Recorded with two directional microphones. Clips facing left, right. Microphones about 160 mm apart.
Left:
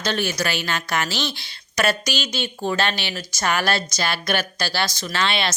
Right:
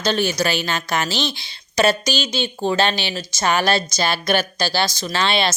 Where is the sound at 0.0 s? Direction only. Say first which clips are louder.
Right 4 dB; 30° right (ahead or behind).